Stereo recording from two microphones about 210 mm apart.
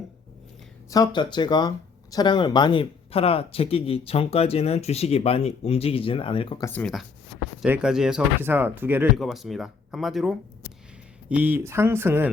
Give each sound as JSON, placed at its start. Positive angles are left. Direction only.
{"t": 0.9, "sound": "speech", "side_deg": 15}
{"t": 6.7, "sound": "speech", "side_deg": 0}